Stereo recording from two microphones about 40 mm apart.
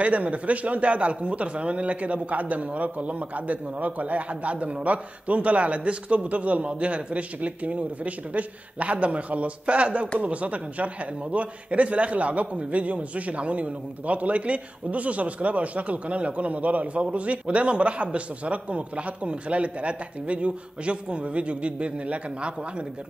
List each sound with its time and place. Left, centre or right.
0.0 s a man's voice: right